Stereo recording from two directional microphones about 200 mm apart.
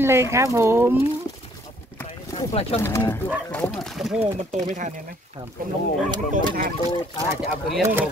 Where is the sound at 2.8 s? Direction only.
10° left (ahead or behind).